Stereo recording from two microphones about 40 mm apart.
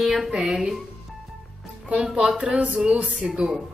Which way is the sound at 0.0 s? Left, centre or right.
Centre.